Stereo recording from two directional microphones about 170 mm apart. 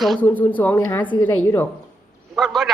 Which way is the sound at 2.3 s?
Centre (ahead or behind).